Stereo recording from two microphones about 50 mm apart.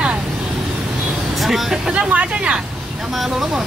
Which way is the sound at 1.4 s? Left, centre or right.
Centre.